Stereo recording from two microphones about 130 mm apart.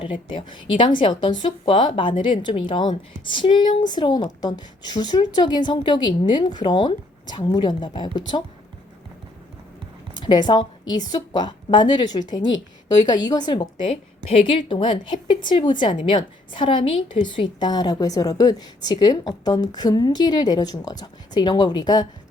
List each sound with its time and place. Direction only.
0.0 s a woman's voice: 40° left (ahead or behind)
10.2 s a woman's voice: 35° left (ahead or behind)